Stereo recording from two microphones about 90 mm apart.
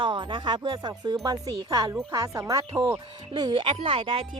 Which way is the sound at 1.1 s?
45° right (ahead or behind).